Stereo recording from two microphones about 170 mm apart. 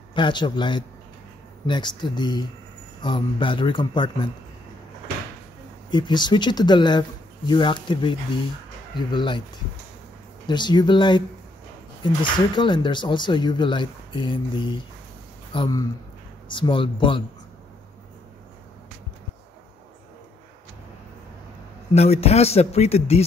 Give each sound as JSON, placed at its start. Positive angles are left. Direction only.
{"t": 0.1, "sound": "speech", "side_deg": 25}
{"t": 5.9, "sound": "speech", "side_deg": 25}
{"t": 10.5, "sound": "speech", "side_deg": 25}
{"t": 21.9, "sound": "speech", "side_deg": 40}